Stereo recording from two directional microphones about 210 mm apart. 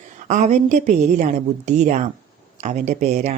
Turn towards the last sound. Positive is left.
turn(degrees=-35)  # may be behind; listen again after turning